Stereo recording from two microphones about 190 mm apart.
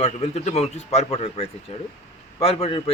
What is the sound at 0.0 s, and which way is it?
A man's voice, 35° left (ahead or behind).